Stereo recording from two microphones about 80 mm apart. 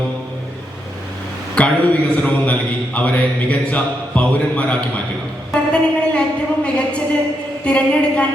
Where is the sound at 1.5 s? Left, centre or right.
Centre.